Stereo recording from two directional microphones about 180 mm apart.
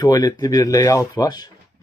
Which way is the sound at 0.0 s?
20° left (ahead or behind).